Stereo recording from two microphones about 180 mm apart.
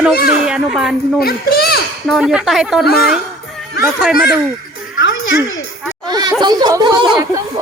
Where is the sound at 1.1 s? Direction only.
60° left (ahead or behind).